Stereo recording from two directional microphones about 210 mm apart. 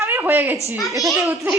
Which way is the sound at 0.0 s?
10° right (ahead or behind).